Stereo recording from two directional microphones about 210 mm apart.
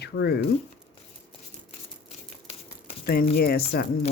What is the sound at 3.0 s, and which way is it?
Speech, 45° left (ahead or behind).